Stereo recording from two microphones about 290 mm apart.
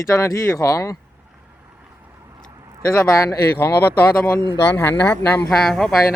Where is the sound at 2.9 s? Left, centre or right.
Centre.